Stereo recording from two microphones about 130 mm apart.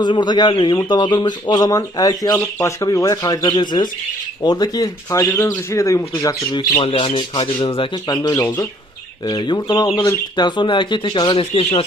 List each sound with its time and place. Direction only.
0.0 s speech: 35° left (ahead or behind)